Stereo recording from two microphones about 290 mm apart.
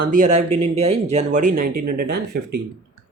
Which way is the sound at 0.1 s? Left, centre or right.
Right.